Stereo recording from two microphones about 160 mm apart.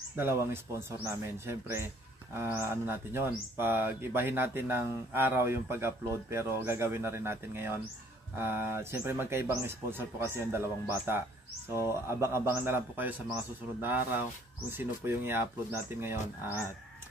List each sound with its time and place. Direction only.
0.1 s speech: 15° right (ahead or behind)